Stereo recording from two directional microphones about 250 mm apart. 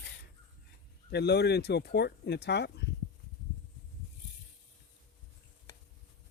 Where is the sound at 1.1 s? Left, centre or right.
Left.